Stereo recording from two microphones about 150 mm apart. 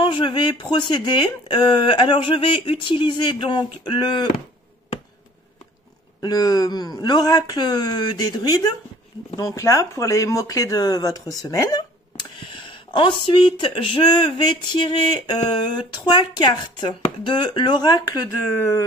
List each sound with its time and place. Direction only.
0.0 s speech: 35° left (ahead or behind)
6.2 s speech: 25° left (ahead or behind)
18.6 s a sound: 15° left (ahead or behind)